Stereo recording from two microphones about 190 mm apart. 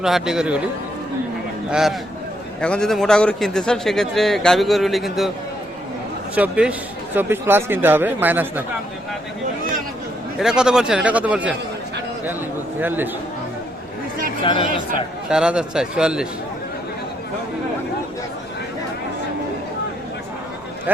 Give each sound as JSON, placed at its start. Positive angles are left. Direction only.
{"t": 0.0, "sound": "a man's voice", "side_deg": -5}
{"t": 1.7, "sound": "a man's voice", "side_deg": 0}
{"t": 6.3, "sound": "a man's voice", "side_deg": -5}
{"t": 10.3, "sound": "a man's voice", "side_deg": -5}
{"t": 12.8, "sound": "a man's voice", "side_deg": -10}
{"t": 14.4, "sound": "speech", "side_deg": 25}
{"t": 15.3, "sound": "a man's voice", "side_deg": -5}